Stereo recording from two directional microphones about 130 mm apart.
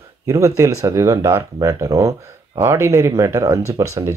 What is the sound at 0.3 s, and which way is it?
Speech, 25° right (ahead or behind).